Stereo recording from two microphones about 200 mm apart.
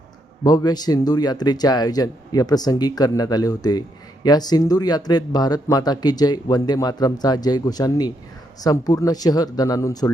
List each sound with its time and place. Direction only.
0.4 s speech: 20° left (ahead or behind)